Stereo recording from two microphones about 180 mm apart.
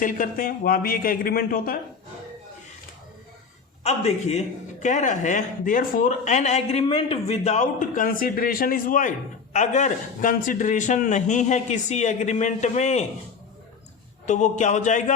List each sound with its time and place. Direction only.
0.0 s a man's voice: 50° left (ahead or behind)
3.8 s a man's voice: 35° left (ahead or behind)
14.3 s a man's voice: 40° left (ahead or behind)